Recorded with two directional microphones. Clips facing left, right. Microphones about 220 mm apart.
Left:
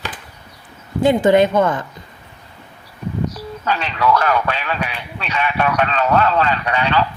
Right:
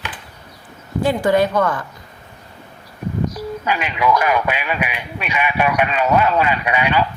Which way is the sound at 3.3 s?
10° right (ahead or behind).